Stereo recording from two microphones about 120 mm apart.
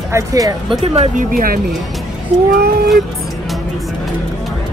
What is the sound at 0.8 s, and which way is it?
Speech, 60° right (ahead or behind).